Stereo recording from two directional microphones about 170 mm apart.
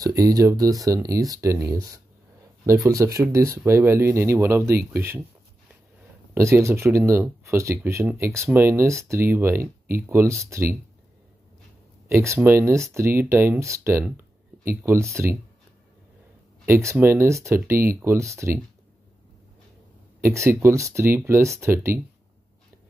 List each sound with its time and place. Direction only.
0.0 s speech: 20° right (ahead or behind)
6.3 s speech: 15° right (ahead or behind)
12.1 s speech: 15° right (ahead or behind)
16.6 s speech: 15° right (ahead or behind)
20.2 s speech: 15° right (ahead or behind)